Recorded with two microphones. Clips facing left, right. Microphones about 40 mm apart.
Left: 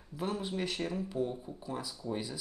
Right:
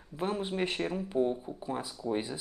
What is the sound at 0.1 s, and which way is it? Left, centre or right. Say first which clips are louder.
Speech: right 3 dB; right.